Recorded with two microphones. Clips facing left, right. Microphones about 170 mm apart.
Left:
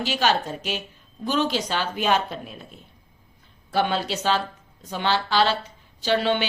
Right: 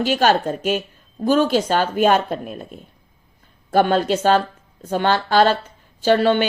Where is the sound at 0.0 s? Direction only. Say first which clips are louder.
Right 6 dB; 50° right (ahead or behind).